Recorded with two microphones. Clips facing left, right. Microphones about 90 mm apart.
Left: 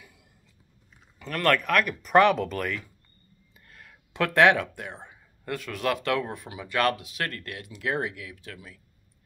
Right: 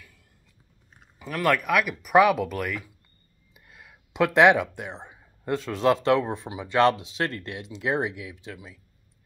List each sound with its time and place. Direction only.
1.2 s speech: 5° right (ahead or behind)